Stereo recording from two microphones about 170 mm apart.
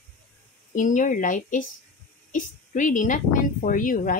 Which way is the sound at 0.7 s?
50° left (ahead or behind).